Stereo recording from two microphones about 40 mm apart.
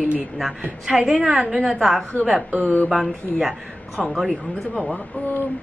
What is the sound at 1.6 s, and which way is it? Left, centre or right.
Speech, centre.